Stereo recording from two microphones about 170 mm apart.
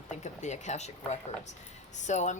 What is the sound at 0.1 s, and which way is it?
Speech, 45° left (ahead or behind).